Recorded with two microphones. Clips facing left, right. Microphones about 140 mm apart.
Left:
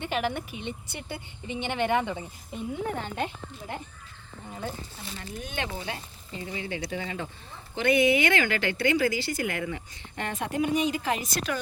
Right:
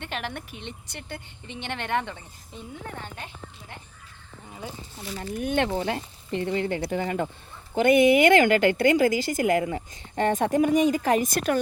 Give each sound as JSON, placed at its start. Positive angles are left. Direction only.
{"t": 0.0, "sound": "a woman's voice", "side_deg": 5}
{"t": 5.4, "sound": "speech", "side_deg": -60}